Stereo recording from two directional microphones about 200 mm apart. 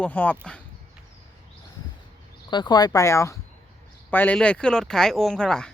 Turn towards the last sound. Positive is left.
turn(degrees=5)  # may be behind; listen again after turning